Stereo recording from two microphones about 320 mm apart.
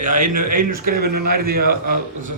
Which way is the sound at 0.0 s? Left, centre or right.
Right.